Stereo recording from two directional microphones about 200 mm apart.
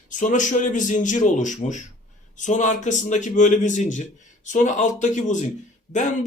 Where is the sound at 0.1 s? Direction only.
40° left (ahead or behind).